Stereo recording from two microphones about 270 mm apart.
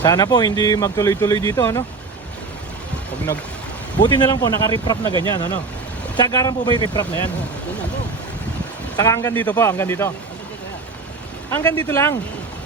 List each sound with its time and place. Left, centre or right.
0.0 s speech: centre
4.0 s speech: centre
9.0 s speech: centre
11.5 s speech: centre